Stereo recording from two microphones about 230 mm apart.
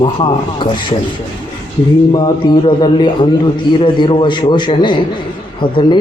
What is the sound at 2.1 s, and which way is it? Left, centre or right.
Speech, centre.